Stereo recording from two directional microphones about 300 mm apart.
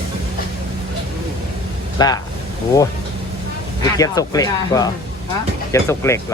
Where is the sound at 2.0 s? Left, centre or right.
Centre.